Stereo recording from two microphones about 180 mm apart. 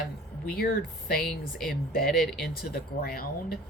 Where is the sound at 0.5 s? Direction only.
55° left (ahead or behind).